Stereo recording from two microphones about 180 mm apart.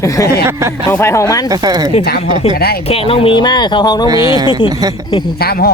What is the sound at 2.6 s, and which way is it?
Speech, 60° left (ahead or behind).